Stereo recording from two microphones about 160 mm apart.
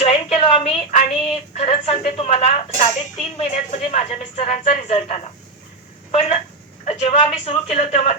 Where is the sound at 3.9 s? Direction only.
45° left (ahead or behind).